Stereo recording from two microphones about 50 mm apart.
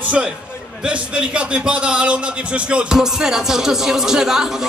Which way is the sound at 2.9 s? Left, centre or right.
Centre.